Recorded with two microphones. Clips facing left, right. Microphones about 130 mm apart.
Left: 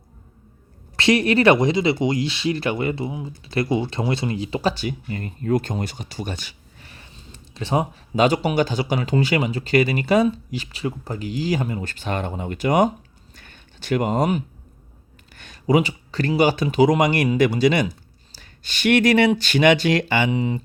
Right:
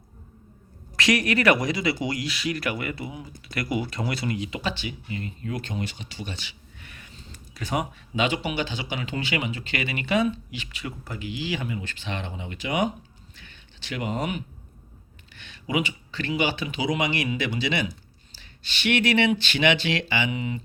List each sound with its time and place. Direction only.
0.9 s speech: 30° left (ahead or behind); by 12.9 s 45° left (ahead or behind)
13.3 s a sound: 45° left (ahead or behind)
15.3 s speech: 45° left (ahead or behind)
20.3 s speech: 35° left (ahead or behind)